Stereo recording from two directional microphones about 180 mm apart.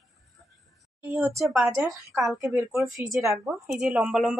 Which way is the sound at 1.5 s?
5° right (ahead or behind).